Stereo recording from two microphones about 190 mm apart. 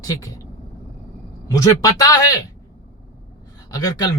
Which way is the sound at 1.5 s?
20° left (ahead or behind).